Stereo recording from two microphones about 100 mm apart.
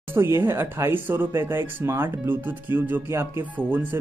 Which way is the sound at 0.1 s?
25° right (ahead or behind).